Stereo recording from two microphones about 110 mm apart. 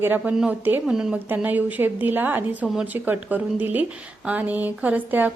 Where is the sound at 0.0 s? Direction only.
20° right (ahead or behind).